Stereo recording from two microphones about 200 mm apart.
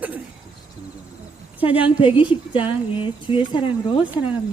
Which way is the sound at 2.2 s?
25° left (ahead or behind).